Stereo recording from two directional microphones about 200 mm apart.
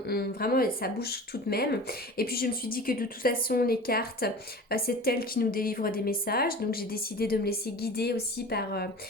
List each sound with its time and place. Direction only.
0.1 s speech: 50° left (ahead or behind)